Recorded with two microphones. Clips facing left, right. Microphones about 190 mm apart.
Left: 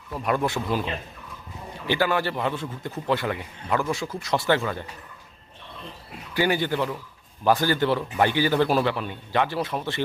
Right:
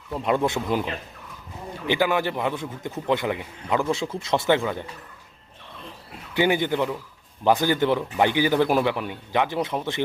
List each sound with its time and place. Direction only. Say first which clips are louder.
0.1 s speech: right 2 dB; 20° right (ahead or behind)
1.9 s a man's voice: right 1 dB; 15° right (ahead or behind)
6.3 s a man's voice: right 2 dB; 20° right (ahead or behind)